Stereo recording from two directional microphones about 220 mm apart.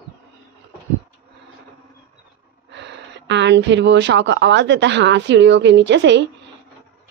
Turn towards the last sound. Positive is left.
turn(degrees=-55)  # may be behind; listen again after turning